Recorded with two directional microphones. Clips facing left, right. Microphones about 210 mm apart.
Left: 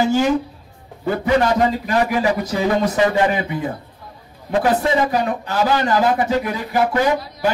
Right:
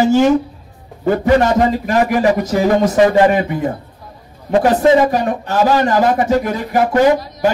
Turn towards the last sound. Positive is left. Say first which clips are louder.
# right 6 dB
turn(degrees=-45)  # may be behind; listen again after turning